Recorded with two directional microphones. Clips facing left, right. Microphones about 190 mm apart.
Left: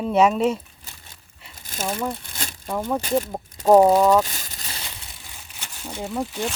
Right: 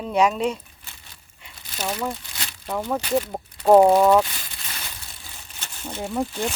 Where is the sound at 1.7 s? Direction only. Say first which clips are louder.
Left 1 dB; 45° left (ahead or behind).